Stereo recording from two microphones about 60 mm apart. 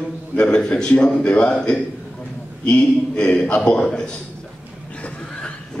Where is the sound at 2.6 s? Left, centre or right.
Centre.